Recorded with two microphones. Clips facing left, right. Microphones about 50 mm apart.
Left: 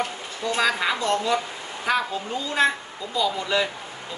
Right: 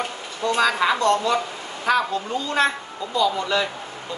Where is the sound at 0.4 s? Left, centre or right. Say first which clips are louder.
Right 3 dB; centre.